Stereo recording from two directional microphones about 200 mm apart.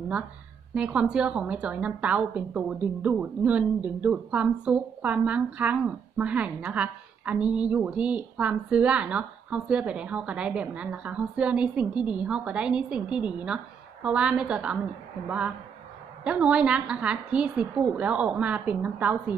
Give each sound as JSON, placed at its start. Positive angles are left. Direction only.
{"t": 0.7, "sound": "a woman's voice", "side_deg": -5}